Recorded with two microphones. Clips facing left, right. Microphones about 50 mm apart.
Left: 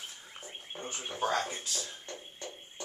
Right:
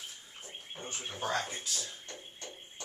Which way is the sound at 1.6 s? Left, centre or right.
Left.